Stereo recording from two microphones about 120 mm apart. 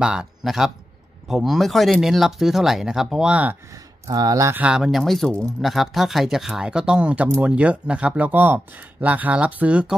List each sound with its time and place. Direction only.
0.0 s speech: 5° right (ahead or behind)
4.1 s speech: 30° right (ahead or behind)
4.6 s speech: 5° right (ahead or behind)